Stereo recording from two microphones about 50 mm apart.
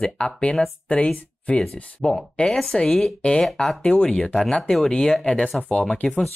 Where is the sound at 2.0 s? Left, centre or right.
Centre.